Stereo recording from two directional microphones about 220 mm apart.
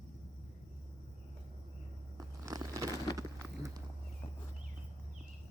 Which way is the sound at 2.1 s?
15° right (ahead or behind).